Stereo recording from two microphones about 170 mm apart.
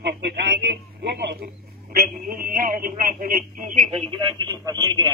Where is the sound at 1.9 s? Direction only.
60° right (ahead or behind).